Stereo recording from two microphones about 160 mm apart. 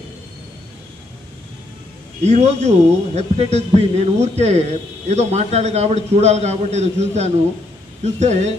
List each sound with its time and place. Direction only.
2.2 s a man's voice: 45° right (ahead or behind)